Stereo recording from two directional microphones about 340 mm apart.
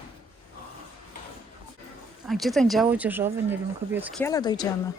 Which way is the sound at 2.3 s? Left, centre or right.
Centre.